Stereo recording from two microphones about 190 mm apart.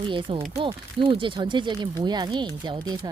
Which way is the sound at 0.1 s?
25° right (ahead or behind).